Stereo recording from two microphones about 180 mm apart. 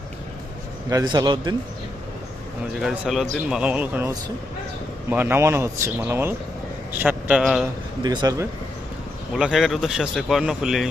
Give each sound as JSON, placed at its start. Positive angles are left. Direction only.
{"t": 0.9, "sound": "a man's voice", "side_deg": -20}
{"t": 2.8, "sound": "a man's voice", "side_deg": -5}
{"t": 8.0, "sound": "a man's voice", "side_deg": -25}
{"t": 9.3, "sound": "speech", "side_deg": -5}